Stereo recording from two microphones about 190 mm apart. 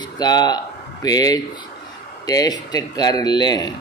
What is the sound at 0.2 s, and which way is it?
Speech, 20° left (ahead or behind).